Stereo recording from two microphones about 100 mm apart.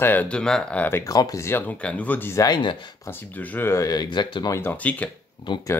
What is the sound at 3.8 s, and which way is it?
Speech, 45° left (ahead or behind).